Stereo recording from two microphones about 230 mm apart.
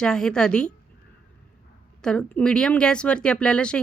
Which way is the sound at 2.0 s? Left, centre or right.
Centre.